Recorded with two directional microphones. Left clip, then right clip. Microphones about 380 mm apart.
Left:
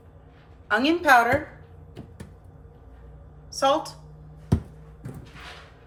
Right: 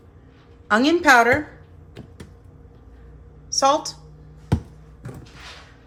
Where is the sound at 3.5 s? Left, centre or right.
Centre.